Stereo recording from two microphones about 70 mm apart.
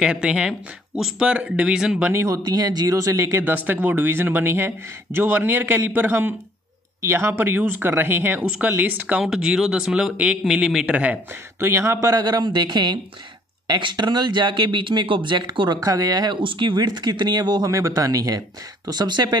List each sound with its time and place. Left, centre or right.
0.0 s speech: centre
0.9 s speech: centre
1.3 s speech: centre
2.2 s speech: right
3.0 s speech: right
3.5 s speech: right
9.2 s speech: centre
10.1 s speech: centre
11.6 s speech: right
17.6 s a man's voice: right
18.9 s speech: right